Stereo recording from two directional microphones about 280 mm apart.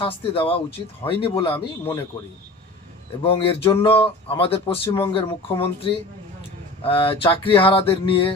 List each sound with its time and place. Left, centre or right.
0.0 s speech: centre
3.2 s speech: centre